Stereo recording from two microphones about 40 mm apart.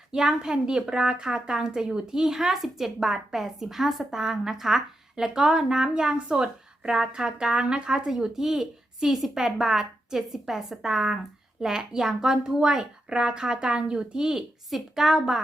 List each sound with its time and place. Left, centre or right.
0.1 s speech: centre
14.7 s a woman's voice: centre